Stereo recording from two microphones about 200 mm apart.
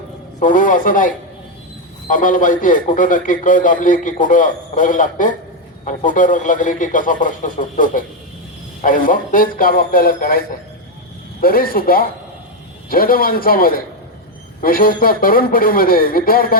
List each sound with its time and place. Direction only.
0.3 s a man's voice: 40° left (ahead or behind)